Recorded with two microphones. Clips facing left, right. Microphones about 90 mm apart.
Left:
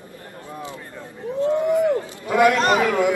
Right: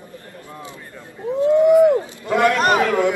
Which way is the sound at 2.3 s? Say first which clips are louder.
Even; 10° left (ahead or behind).